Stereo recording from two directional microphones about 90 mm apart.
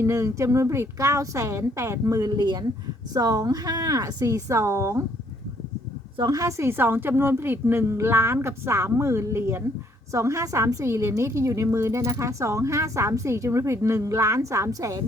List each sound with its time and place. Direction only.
0.0 s a woman's voice: 35° right (ahead or behind)
6.6 s a woman's voice: 25° right (ahead or behind)